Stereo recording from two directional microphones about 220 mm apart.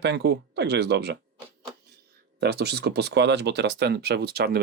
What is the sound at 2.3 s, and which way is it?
Speech, 50° right (ahead or behind).